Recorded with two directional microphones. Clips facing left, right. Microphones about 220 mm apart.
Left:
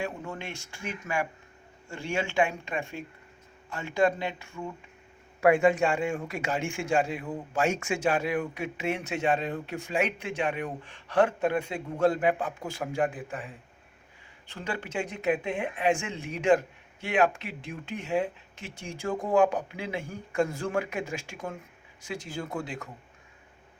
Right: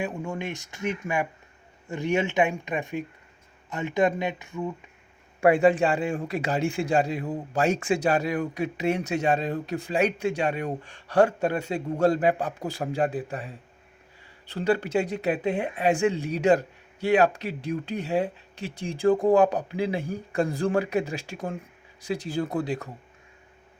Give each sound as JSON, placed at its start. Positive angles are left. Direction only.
{"t": 0.0, "sound": "speech", "side_deg": -15}
{"t": 5.4, "sound": "a man's voice", "side_deg": -35}